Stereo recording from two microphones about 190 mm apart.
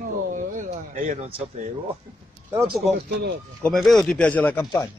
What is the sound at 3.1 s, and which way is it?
Speech, 60° right (ahead or behind).